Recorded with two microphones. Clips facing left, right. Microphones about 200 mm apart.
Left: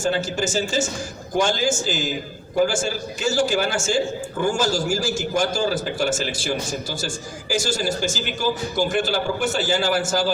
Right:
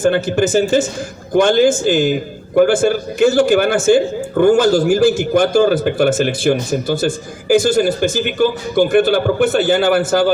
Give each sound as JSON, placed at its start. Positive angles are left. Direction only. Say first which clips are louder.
{"t": 0.0, "sound": "a man's voice", "louder": "right 9 dB", "side_deg": -60}